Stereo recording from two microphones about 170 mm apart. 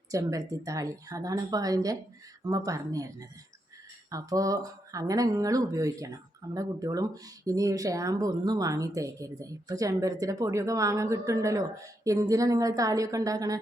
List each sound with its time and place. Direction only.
0.1 s speech: 20° right (ahead or behind)